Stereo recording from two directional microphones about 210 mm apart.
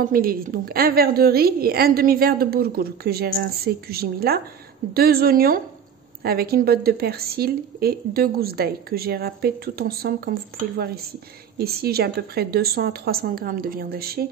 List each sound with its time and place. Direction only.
0.0 s a woman's voice: 45° right (ahead or behind)
11.5 s a woman's voice: 45° right (ahead or behind)